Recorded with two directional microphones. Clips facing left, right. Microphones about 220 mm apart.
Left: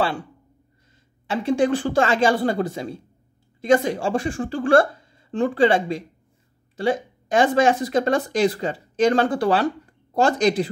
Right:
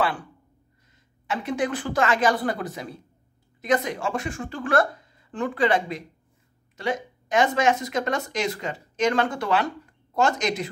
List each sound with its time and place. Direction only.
1.2 s a woman's voice: 30° left (ahead or behind)